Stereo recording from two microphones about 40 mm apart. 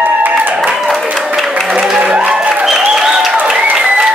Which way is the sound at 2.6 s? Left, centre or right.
Centre.